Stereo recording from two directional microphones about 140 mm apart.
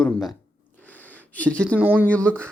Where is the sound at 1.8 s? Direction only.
10° right (ahead or behind).